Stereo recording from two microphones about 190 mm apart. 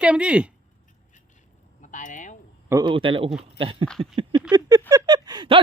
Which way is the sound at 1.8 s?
45° left (ahead or behind).